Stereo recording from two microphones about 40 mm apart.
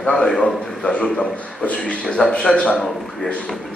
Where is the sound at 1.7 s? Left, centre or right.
Left.